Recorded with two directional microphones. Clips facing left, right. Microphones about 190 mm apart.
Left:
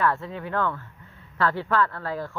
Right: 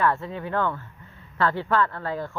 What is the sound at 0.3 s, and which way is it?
Speech, 25° right (ahead or behind).